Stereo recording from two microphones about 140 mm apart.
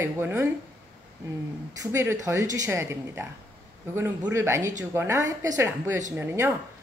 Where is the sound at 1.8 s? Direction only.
20° right (ahead or behind).